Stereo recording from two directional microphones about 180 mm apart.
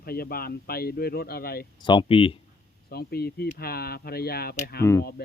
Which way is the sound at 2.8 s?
60° left (ahead or behind).